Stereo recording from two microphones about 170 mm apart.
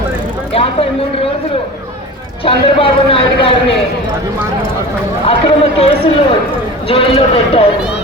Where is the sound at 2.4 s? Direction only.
30° left (ahead or behind).